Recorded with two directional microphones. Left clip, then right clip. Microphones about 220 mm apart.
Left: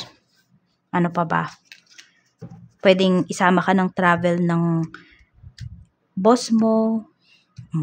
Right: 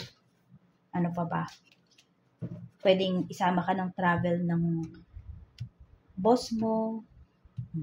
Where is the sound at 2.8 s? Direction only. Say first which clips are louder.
Left 9 dB; 40° left (ahead or behind).